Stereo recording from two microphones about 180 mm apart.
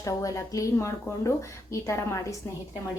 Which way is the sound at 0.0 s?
20° left (ahead or behind).